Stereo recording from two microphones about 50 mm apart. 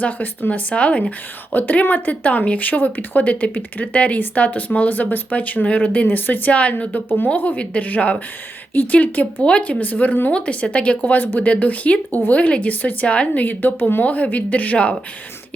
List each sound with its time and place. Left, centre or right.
0.0 s a woman's voice: left
1.5 s speech: left
6.1 s speech: left
6.5 s a woman's voice: left
9.8 s a woman's voice: left
11.0 s a woman's voice: left
13.4 s speech: left